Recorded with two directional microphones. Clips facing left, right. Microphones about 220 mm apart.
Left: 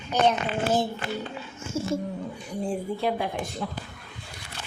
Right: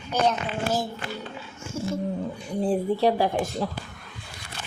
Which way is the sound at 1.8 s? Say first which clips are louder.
Left 1 dB; 25° left (ahead or behind).